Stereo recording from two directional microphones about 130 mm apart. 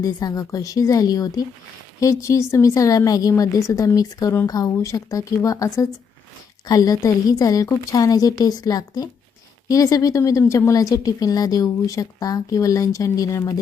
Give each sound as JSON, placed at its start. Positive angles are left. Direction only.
{"t": 0.0, "sound": "a woman's voice", "side_deg": 30}